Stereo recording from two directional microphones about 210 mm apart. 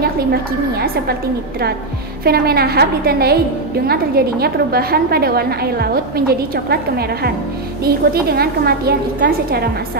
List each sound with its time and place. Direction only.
0.0 s a woman's voice: 50° right (ahead or behind)
2.2 s a woman's voice: 45° right (ahead or behind)